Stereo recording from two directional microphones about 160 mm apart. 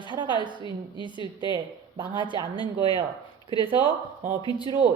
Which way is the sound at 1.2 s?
30° left (ahead or behind).